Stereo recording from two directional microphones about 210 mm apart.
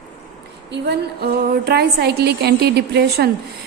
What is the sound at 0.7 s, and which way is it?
A woman's voice, 50° right (ahead or behind).